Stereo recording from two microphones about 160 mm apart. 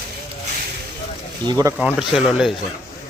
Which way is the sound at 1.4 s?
25° right (ahead or behind).